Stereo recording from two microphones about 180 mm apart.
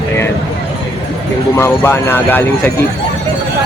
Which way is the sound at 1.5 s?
15° left (ahead or behind).